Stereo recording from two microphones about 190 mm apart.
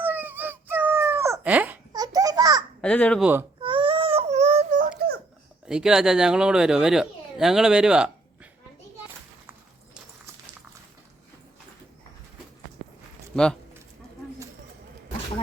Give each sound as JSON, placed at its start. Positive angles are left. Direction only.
{"t": 0.0, "sound": "a sound", "side_deg": -10}
{"t": 1.9, "sound": "babbling", "side_deg": -20}
{"t": 2.8, "sound": "speech", "side_deg": 5}
{"t": 3.6, "sound": "baby cry", "side_deg": -25}
{"t": 5.6, "sound": "speech", "side_deg": -5}
{"t": 13.3, "sound": "speech", "side_deg": 5}